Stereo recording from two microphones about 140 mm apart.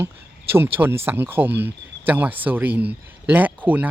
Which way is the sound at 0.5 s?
15° right (ahead or behind).